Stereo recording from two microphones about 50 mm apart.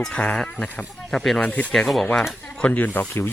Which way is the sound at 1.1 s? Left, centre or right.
Centre.